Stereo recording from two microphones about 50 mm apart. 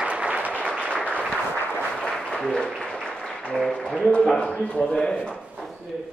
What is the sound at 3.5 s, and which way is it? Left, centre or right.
Music, centre.